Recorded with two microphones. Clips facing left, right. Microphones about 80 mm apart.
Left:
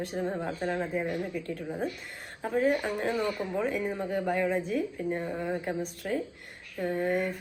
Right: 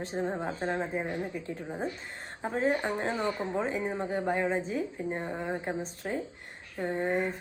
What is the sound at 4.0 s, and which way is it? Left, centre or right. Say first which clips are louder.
Speech: left 1 dB; centre.